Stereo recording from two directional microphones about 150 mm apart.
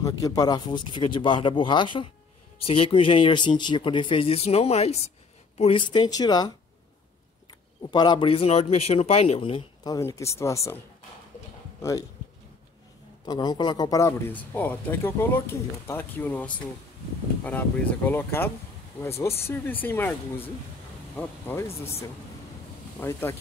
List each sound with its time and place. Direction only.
0.0 s speech: 25° left (ahead or behind)
7.9 s speech: 30° left (ahead or behind)
9.8 s speech: 20° left (ahead or behind)
13.2 s speech: 25° left (ahead or behind)
14.3 s speech: 15° left (ahead or behind)
22.9 s speech: 15° left (ahead or behind)